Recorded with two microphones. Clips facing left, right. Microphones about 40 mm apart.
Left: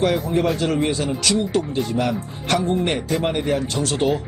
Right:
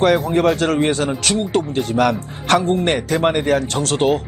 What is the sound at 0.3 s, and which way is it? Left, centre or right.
Speech, right.